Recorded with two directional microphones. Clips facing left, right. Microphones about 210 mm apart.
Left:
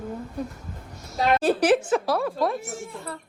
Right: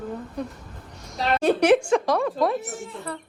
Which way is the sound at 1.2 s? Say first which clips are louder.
Even; centre (ahead or behind).